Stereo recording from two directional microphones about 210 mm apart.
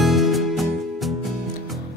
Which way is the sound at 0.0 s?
Centre (ahead or behind).